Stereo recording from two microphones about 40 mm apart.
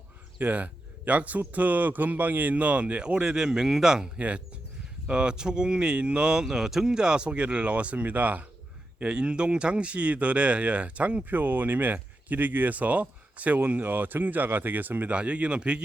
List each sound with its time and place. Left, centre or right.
0.5 s speech: right; by 4.1 s centre
4.2 s speech: right
6.4 s speech: centre
6.9 s speech: right
8.0 s speech: right
9.0 s speech: right
13.7 s speech: right
15.1 s speech: right